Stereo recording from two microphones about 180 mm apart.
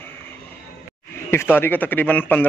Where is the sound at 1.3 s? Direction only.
10° left (ahead or behind).